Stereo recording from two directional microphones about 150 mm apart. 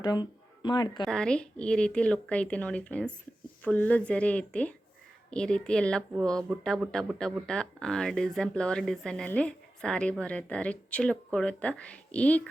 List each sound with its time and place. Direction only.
0.0 s speech: 30° left (ahead or behind)
1.0 s speech: 5° left (ahead or behind)